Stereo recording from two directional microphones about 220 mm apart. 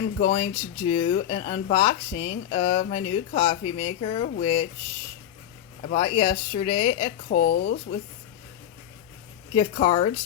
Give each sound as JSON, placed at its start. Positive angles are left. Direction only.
{"t": 0.2, "sound": "speech", "side_deg": 25}
{"t": 5.8, "sound": "speech", "side_deg": 25}
{"t": 7.4, "sound": "speech", "side_deg": 55}
{"t": 9.6, "sound": "speech", "side_deg": 25}